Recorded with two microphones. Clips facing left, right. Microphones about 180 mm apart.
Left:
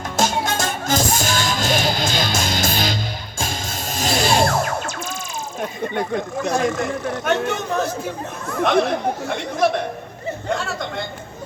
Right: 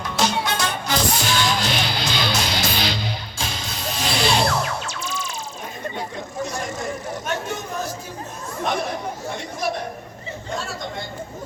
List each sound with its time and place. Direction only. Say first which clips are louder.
0.0 s music: left 2 dB; 45° left (ahead or behind); by 7.9 s 70° left (ahead or behind)
8.4 s speech: left 7 dB; 65° left (ahead or behind)